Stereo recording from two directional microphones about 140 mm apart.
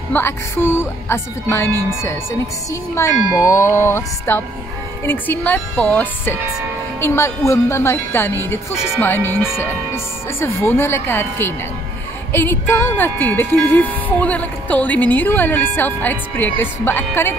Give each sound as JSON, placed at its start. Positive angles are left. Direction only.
{"t": 0.1, "sound": "speech", "side_deg": 15}
{"t": 2.7, "sound": "speech", "side_deg": 20}